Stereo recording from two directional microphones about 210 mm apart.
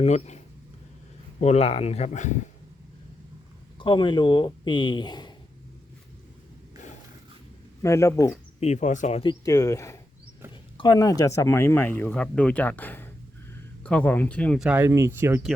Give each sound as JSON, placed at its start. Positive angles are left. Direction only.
{"t": 0.0, "sound": "speech", "side_deg": 30}
{"t": 3.8, "sound": "speech", "side_deg": 20}
{"t": 7.8, "sound": "speech", "side_deg": 15}
{"t": 8.6, "sound": "speech", "side_deg": 35}
{"t": 9.4, "sound": "speech", "side_deg": 15}